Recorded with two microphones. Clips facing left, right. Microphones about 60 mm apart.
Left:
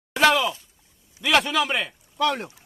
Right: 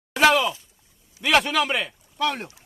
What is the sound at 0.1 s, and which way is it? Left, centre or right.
A man's voice, centre.